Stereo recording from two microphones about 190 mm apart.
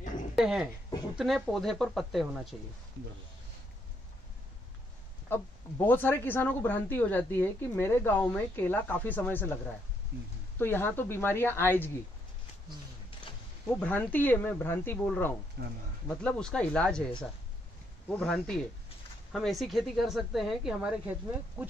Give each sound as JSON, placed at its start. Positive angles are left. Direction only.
{"t": 0.4, "sound": "a woman's voice", "side_deg": -5}
{"t": 5.3, "sound": "speech", "side_deg": 10}
{"t": 10.6, "sound": "speech", "side_deg": 10}
{"t": 13.7, "sound": "speech", "side_deg": 10}
{"t": 15.6, "sound": "speech", "side_deg": -60}
{"t": 16.1, "sound": "a woman's voice", "side_deg": 5}